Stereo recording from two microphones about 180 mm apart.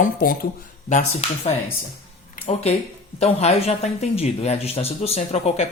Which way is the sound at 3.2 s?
35° left (ahead or behind).